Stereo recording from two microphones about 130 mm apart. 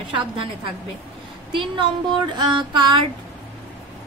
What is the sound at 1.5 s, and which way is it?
A woman's voice, 40° right (ahead or behind).